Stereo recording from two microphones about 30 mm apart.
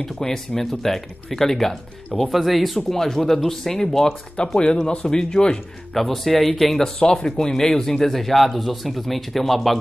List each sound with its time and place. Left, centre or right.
0.0 s speech: centre
2.2 s speech: centre
2.9 s speech: centre
4.4 s speech: left
5.9 s speech: centre
7.0 s speech: left; by 9.8 s centre